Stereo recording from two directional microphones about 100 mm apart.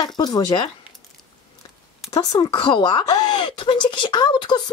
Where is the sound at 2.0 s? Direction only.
40° left (ahead or behind).